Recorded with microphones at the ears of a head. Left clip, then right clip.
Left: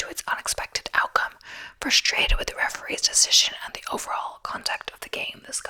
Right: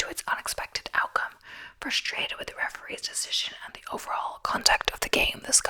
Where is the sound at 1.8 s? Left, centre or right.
Left.